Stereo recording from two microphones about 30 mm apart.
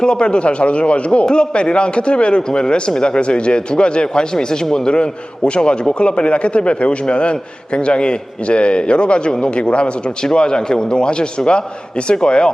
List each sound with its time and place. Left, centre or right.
0.0 s a man's voice: left
1.3 s a man's voice: left
10.3 s a man's voice: left